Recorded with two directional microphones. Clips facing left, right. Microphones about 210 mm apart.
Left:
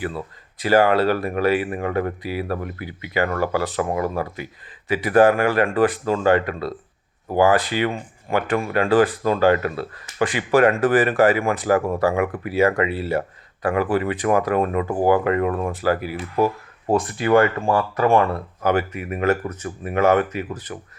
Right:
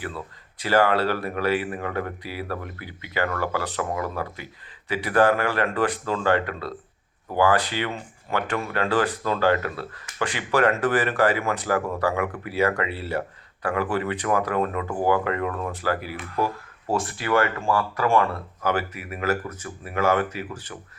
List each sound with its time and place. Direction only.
0.6 s speech: 15° left (ahead or behind)
15.4 s speech: 35° left (ahead or behind)
15.8 s speech: 15° left (ahead or behind)